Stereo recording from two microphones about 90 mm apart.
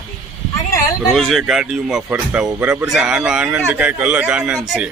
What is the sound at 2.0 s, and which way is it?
Speech, 20° right (ahead or behind).